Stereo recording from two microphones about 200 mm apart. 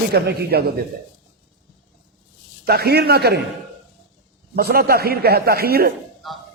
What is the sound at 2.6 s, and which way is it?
Speech, 50° right (ahead or behind).